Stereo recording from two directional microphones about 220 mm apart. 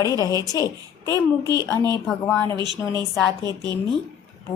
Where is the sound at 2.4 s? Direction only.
20° right (ahead or behind).